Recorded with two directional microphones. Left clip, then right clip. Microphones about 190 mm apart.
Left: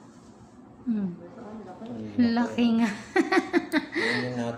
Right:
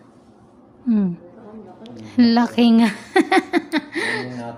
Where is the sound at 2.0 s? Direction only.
55° right (ahead or behind).